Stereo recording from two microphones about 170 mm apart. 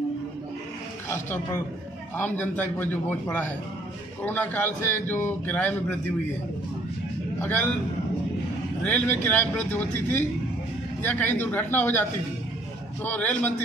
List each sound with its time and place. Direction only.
1.1 s a man's voice: 15° left (ahead or behind)
8.8 s a man's voice: 10° left (ahead or behind)